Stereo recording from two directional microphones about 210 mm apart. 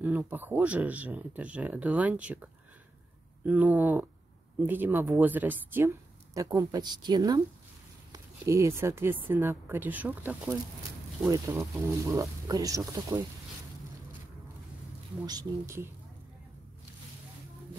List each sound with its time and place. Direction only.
0.0 s speech: 10° right (ahead or behind)
15.2 s speech: 15° right (ahead or behind)